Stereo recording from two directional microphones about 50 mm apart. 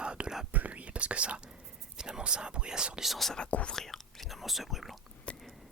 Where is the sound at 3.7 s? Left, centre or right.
Centre.